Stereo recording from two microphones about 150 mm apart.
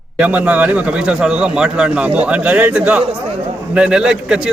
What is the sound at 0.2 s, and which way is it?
A man's voice, 10° right (ahead or behind).